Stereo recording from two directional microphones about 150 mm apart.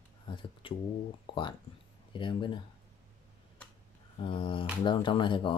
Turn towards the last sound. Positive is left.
turn(degrees=35)  # may be behind; listen again after turning